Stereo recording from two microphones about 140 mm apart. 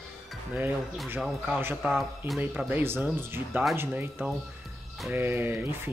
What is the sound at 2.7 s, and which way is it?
Speech, 15° right (ahead or behind).